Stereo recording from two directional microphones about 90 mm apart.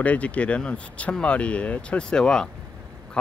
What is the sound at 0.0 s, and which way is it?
Speech, 15° left (ahead or behind).